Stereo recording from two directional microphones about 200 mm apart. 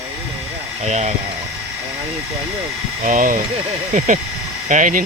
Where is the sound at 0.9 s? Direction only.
35° right (ahead or behind).